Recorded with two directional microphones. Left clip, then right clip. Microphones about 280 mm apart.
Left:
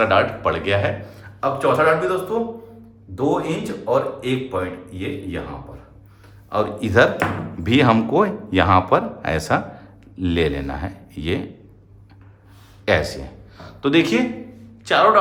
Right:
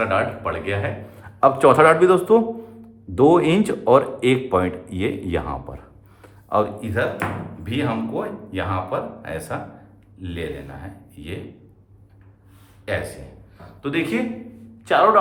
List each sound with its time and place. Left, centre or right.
0.0 s speech: centre
1.2 s speech: centre
6.7 s speech: centre
12.8 s a man's voice: left
14.8 s a man's voice: centre